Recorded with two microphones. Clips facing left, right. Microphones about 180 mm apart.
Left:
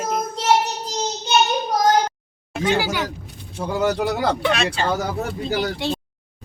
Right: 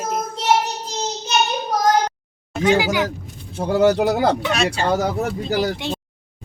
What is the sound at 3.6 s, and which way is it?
Speech, 35° right (ahead or behind).